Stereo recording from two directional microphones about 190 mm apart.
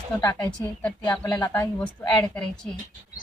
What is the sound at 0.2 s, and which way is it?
Speech, 15° left (ahead or behind).